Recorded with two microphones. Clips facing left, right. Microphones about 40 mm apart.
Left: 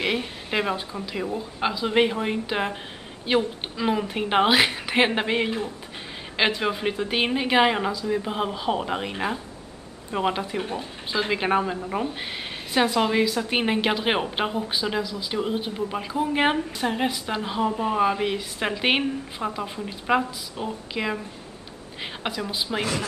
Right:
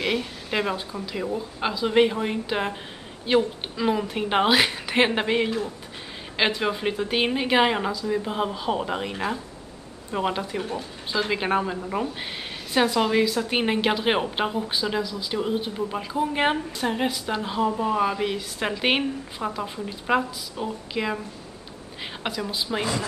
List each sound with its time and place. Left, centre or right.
0.5 s a woman's voice: centre
10.6 s speech: left
11.1 s a woman's voice: centre